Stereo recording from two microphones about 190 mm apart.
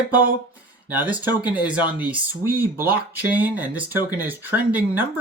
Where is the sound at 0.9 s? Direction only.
10° right (ahead or behind).